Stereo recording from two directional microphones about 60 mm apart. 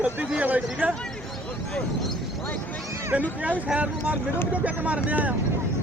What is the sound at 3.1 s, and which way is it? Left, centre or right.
Speech, right.